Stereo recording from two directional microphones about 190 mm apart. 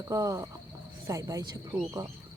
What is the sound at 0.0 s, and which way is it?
Speech, 15° right (ahead or behind).